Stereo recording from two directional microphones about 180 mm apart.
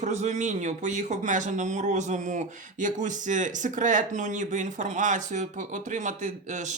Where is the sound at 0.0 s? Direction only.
40° right (ahead or behind).